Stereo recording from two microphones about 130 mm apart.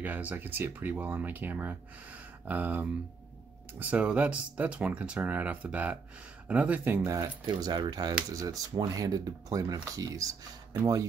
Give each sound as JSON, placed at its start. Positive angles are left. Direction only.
{"t": 0.0, "sound": "speech", "side_deg": -10}
{"t": 7.4, "sound": "speech", "side_deg": -35}